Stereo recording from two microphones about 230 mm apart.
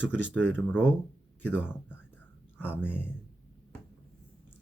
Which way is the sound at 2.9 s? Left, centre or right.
Centre.